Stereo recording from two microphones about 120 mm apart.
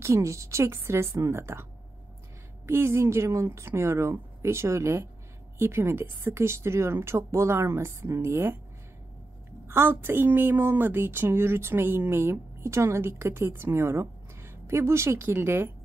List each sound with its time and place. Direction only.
0.0 s speech: 25° right (ahead or behind)
9.7 s speech: 20° right (ahead or behind)